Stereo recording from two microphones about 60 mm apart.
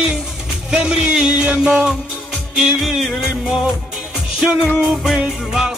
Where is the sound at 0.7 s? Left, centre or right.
Centre.